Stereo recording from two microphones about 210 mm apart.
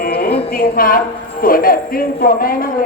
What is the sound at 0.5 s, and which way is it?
A woman's voice, 45° left (ahead or behind).